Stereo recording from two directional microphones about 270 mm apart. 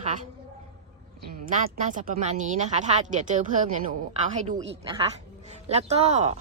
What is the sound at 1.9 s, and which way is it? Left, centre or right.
A woman's voice, right.